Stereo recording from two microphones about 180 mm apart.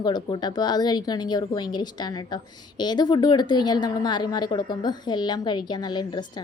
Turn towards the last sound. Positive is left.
turn(degrees=25)  # may be behind; listen again after turning